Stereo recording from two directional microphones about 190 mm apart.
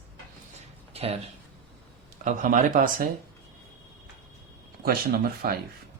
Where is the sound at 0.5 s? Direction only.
35° right (ahead or behind).